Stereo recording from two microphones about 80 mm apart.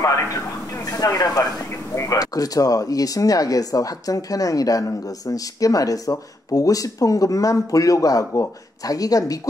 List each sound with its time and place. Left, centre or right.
0.9 s speech: left